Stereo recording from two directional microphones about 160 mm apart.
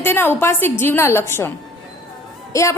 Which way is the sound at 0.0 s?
15° left (ahead or behind).